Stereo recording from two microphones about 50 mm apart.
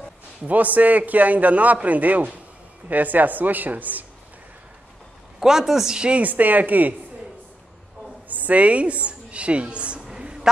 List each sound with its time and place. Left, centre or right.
0.5 s a man's voice: right
5.4 s a woman's voice: centre
5.9 s a woman's voice: centre
6.2 s a man's voice: right
8.3 s a woman's voice: right
10.2 s a sound: centre